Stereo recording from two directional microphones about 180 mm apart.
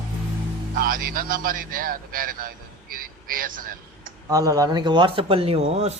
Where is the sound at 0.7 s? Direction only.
50° right (ahead or behind).